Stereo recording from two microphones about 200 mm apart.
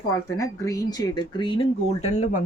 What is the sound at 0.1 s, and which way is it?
Speech, 15° left (ahead or behind).